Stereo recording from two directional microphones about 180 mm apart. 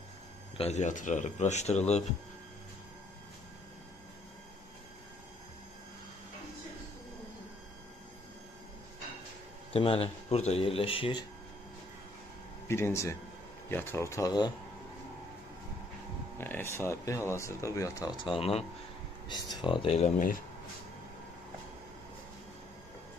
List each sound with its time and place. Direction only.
0.6 s speech: 40° left (ahead or behind)
9.7 s speech: 30° left (ahead or behind)
12.6 s speech: 15° left (ahead or behind)
16.3 s speech: 10° left (ahead or behind); by 20.1 s 30° left (ahead or behind)